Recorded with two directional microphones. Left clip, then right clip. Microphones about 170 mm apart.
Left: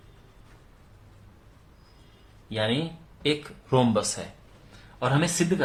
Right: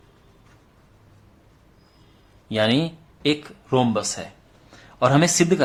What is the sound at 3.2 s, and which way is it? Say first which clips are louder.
Speech: right 4 dB; 30° right (ahead or behind).